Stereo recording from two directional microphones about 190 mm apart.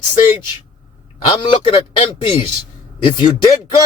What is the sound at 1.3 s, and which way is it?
Speech, 25° left (ahead or behind).